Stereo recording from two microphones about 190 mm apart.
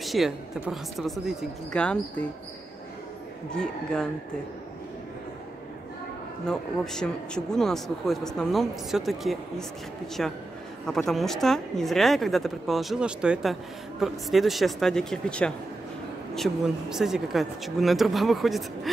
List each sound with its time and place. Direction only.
0.0 s speech: centre (ahead or behind)
3.5 s speech: 5° left (ahead or behind)
6.4 s speech: 5° left (ahead or behind)